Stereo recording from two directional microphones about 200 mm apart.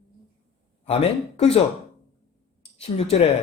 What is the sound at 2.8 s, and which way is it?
Speech, 30° left (ahead or behind).